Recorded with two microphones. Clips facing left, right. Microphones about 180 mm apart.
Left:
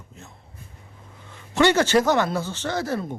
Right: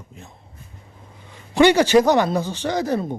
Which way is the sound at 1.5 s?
15° right (ahead or behind).